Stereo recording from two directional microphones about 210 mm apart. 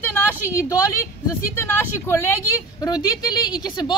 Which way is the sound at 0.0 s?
10° left (ahead or behind).